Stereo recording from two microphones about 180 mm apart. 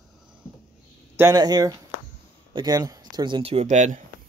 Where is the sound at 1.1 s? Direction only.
15° right (ahead or behind); by 4.0 s 40° right (ahead or behind).